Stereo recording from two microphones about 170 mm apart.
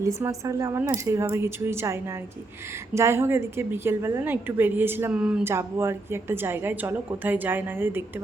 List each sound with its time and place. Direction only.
0.0 s a woman's voice: 20° right (ahead or behind)